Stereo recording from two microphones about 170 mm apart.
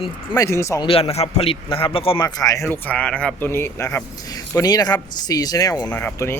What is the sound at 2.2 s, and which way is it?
Speech, 20° left (ahead or behind).